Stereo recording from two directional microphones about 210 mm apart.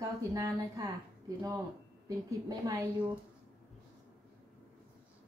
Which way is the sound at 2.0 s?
15° right (ahead or behind).